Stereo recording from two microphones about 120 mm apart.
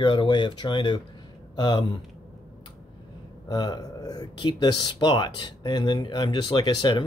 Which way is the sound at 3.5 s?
35° left (ahead or behind).